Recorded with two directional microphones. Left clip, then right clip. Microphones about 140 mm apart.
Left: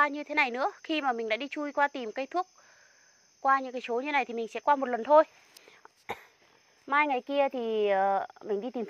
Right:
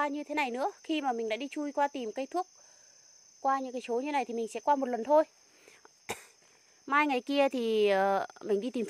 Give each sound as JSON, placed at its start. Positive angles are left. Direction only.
{"t": 0.0, "sound": "speech", "side_deg": -35}
{"t": 3.4, "sound": "speech", "side_deg": -40}